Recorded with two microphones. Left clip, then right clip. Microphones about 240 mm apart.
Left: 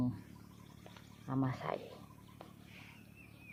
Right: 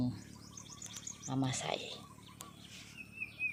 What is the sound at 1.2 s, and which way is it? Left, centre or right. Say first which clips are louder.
Speech: even; centre.